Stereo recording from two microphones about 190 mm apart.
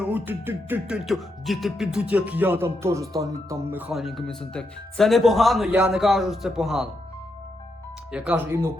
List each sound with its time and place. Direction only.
0.0 s speech: 10° right (ahead or behind)
8.1 s speech: 10° right (ahead or behind)